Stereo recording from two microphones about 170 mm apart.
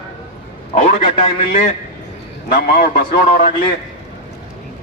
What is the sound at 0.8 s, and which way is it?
Speech, 45° left (ahead or behind).